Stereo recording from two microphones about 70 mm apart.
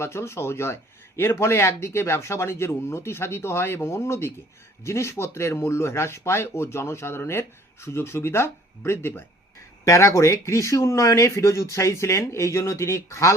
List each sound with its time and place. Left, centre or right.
0.0 s speech: left
9.8 s speech: left